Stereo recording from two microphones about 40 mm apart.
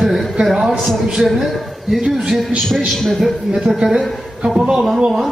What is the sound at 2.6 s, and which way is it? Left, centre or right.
Speech, centre.